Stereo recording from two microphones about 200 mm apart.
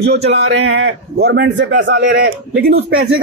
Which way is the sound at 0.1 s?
60° right (ahead or behind).